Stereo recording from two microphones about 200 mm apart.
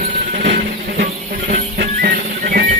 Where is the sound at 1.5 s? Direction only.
50° right (ahead or behind).